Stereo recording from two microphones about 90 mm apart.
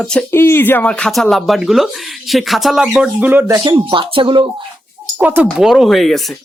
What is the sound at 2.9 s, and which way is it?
Speech, 15° right (ahead or behind).